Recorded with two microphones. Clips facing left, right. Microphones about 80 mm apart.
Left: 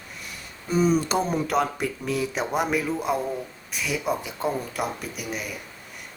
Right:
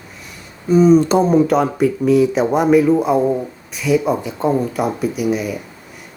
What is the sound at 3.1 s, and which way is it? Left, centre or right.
Speech, right.